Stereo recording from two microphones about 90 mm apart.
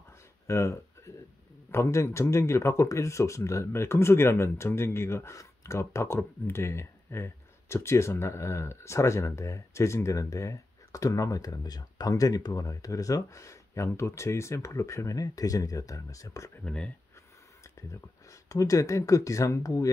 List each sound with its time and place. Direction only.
0.5 s speech: 35° left (ahead or behind)
16.6 s speech: 10° left (ahead or behind)
18.3 s speech: 40° left (ahead or behind)